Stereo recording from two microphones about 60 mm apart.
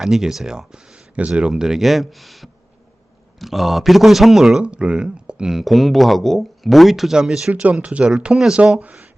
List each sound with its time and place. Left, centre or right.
0.0 s speech: centre
4.6 s speech: centre
7.5 s speech: right